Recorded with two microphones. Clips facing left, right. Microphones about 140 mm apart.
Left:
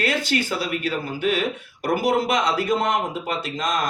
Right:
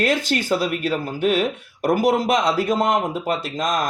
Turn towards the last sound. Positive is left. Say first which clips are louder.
# right 2 dB
turn(degrees=-45)  # may be behind; listen again after turning